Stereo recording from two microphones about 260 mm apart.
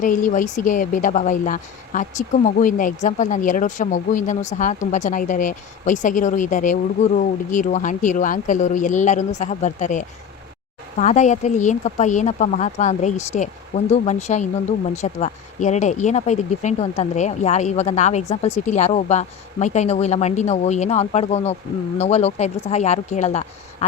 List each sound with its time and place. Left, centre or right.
0.0 s a woman's voice: left